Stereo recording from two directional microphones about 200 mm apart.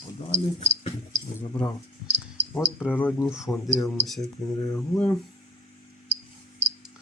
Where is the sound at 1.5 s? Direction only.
10° left (ahead or behind).